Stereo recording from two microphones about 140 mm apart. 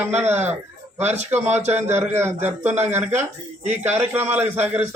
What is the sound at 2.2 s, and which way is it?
A man's voice, 15° right (ahead or behind).